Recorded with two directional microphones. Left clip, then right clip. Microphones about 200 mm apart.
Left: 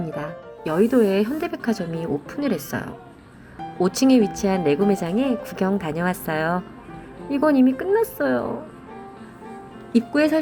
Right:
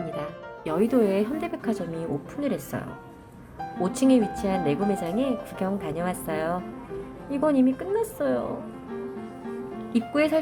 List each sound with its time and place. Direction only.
0.2 s speech: 10° left (ahead or behind)
9.9 s speech: 15° left (ahead or behind)